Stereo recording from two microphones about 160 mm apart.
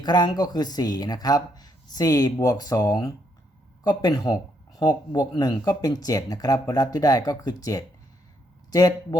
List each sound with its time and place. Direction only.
0.0 s speech: 25° left (ahead or behind)